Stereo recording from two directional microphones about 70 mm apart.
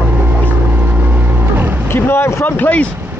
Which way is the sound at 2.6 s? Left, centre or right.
Left.